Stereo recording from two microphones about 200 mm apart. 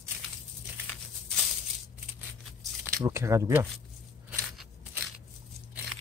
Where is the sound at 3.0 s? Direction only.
15° right (ahead or behind).